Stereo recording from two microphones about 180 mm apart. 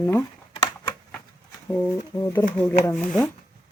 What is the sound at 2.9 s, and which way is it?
Speech, 5° left (ahead or behind).